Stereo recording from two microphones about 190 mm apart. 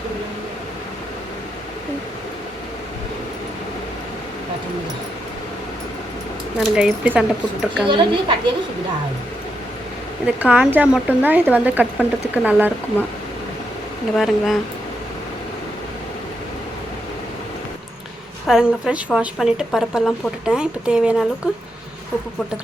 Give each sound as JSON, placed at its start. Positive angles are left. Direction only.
{"t": 6.7, "sound": "a woman's voice", "side_deg": -5}
{"t": 7.9, "sound": "speech", "side_deg": -25}
{"t": 10.2, "sound": "speech", "side_deg": -5}
{"t": 14.2, "sound": "a woman's voice", "side_deg": 0}
{"t": 18.4, "sound": "a woman's voice", "side_deg": -5}